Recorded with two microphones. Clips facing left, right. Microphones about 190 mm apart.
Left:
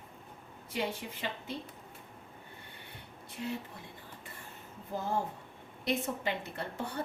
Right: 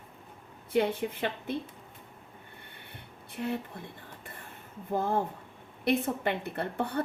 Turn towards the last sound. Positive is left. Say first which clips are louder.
# right 6 dB
turn(degrees=-55)  # may be behind; listen again after turning